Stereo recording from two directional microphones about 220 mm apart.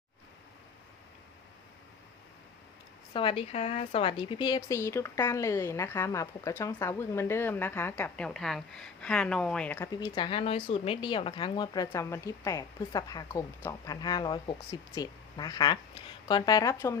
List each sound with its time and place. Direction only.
3.1 s speech: 25° left (ahead or behind); by 9.9 s 5° left (ahead or behind)
9.9 s speech: 20° left (ahead or behind)